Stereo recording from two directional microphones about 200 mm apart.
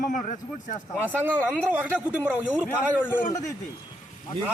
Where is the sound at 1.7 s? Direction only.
10° right (ahead or behind).